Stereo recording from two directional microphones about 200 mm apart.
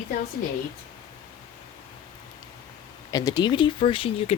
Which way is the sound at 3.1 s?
20° left (ahead or behind).